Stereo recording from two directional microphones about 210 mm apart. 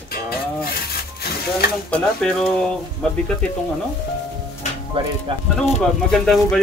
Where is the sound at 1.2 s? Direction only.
50° left (ahead or behind).